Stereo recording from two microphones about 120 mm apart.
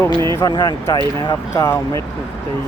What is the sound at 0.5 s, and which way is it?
Speech, 35° left (ahead or behind).